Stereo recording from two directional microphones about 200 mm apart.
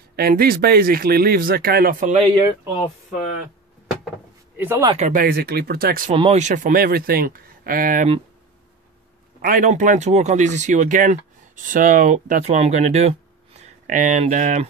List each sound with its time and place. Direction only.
0.1 s speech: 50° right (ahead or behind); by 2.3 s 35° right (ahead or behind)
4.6 s speech: 10° right (ahead or behind)
4.8 s speech: 35° right (ahead or behind)
6.1 s speech: 30° right (ahead or behind)
9.4 s speech: 40° right (ahead or behind)